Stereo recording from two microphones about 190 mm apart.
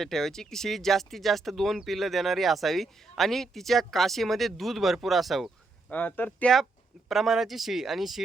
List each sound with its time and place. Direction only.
0.0 s speech: centre (ahead or behind)